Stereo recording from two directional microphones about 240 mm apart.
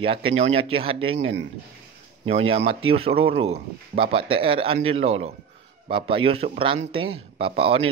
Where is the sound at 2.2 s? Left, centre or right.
Right.